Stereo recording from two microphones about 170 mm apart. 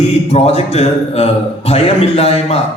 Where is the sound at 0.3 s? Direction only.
40° left (ahead or behind).